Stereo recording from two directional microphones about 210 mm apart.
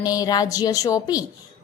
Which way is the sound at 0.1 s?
20° left (ahead or behind).